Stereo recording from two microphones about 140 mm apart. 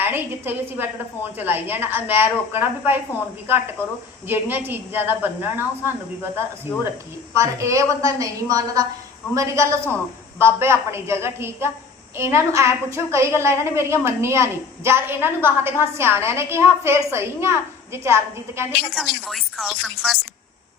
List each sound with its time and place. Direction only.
0.0 s a woman's voice: 15° right (ahead or behind)
4.3 s a woman's voice: 15° right (ahead or behind)
7.3 s a woman's voice: 20° right (ahead or behind)
18.9 s speech: centre (ahead or behind)